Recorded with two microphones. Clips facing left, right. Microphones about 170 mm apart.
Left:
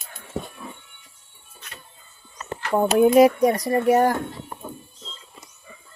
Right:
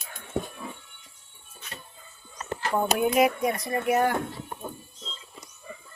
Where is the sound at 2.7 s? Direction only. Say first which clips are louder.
Left 8 dB; 35° left (ahead or behind).